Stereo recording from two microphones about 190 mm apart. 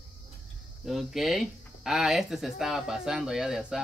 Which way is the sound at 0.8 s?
Centre (ahead or behind).